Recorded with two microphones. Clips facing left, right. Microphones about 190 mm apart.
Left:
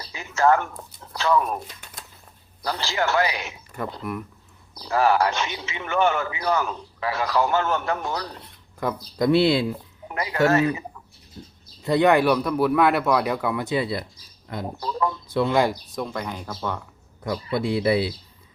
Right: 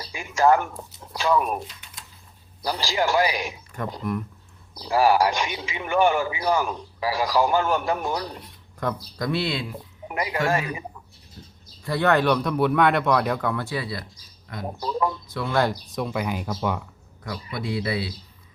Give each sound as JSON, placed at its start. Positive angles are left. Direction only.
{"t": 0.1, "sound": "speech", "side_deg": -10}
{"t": 1.6, "sound": "a sound", "side_deg": 50}
{"t": 2.6, "sound": "a man's voice", "side_deg": -15}
{"t": 4.0, "sound": "speech", "side_deg": 5}
{"t": 4.8, "sound": "a man's voice", "side_deg": -15}
{"t": 8.8, "sound": "speech", "side_deg": 5}
{"t": 9.1, "sound": "speech", "side_deg": 25}
{"t": 10.1, "sound": "a man's voice", "side_deg": -15}
{"t": 11.9, "sound": "speech", "side_deg": 15}
{"t": 14.8, "sound": "a man's voice", "side_deg": -15}
{"t": 15.3, "sound": "speech", "side_deg": 25}
{"t": 15.9, "sound": "a man's voice", "side_deg": 0}
{"t": 17.2, "sound": "speech", "side_deg": 25}